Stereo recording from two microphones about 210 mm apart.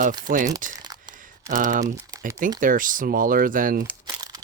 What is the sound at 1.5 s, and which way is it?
Speech, 35° right (ahead or behind).